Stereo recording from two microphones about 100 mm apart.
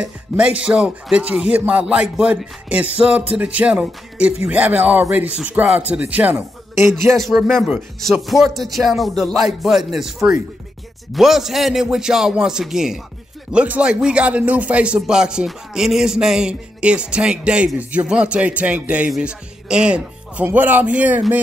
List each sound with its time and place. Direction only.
0.0 s speech: 10° right (ahead or behind)
6.9 s speech: centre (ahead or behind); by 21.2 s 15° right (ahead or behind)